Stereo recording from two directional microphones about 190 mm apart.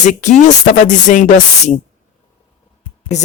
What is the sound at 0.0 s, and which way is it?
Speech, 40° left (ahead or behind).